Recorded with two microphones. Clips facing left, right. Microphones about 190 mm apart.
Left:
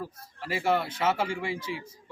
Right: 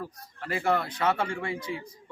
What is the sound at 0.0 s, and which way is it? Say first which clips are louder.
Speech: even; 5° left (ahead or behind).